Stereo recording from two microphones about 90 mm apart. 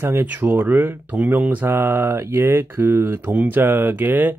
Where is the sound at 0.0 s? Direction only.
25° right (ahead or behind).